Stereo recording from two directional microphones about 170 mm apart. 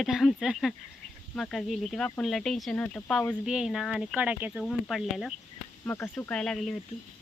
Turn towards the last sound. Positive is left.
turn(degrees=0)  # may be behind; listen again after turning